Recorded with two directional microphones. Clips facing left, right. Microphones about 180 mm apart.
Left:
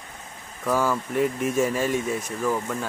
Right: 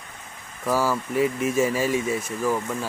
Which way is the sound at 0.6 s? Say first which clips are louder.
Even; 5° right (ahead or behind).